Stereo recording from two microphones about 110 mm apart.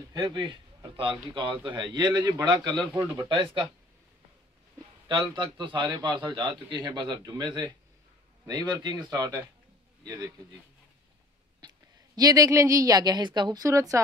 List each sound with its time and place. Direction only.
0.1 s a man's voice: 40° right (ahead or behind)
2.9 s speech: 30° right (ahead or behind)
3.3 s a man's voice: 50° right (ahead or behind)
5.4 s a man's voice: 45° right (ahead or behind)
11.6 s a sound: 40° right (ahead or behind)
12.2 s a woman's voice: 35° right (ahead or behind)